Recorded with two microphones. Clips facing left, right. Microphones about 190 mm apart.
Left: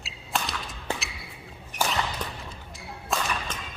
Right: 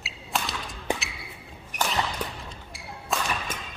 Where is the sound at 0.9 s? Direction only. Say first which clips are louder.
Right 4 dB; 15° right (ahead or behind).